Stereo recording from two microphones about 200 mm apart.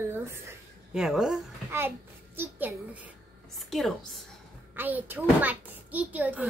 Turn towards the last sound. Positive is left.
turn(degrees=-10)  # may be behind; listen again after turning